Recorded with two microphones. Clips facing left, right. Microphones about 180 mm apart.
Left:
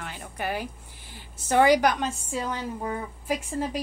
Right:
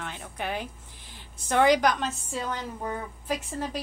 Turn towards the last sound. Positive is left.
turn(degrees=10)  # may be behind; listen again after turning